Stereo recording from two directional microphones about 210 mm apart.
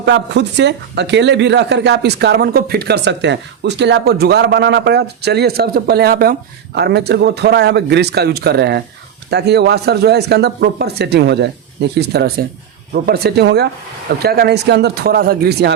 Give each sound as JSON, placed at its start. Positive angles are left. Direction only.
{"t": 0.0, "sound": "a woman's voice", "side_deg": -55}